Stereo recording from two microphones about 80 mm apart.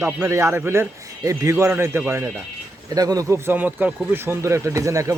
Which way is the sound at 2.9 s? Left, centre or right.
Right.